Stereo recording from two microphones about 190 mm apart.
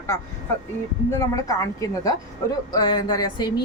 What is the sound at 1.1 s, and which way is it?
A woman's voice, 15° left (ahead or behind).